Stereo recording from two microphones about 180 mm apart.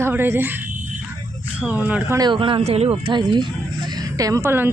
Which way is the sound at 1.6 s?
10° right (ahead or behind).